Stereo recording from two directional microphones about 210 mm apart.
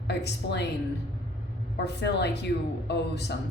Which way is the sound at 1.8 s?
55° left (ahead or behind).